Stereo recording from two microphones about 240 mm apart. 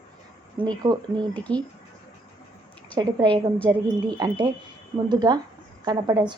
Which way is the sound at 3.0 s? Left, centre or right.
Centre.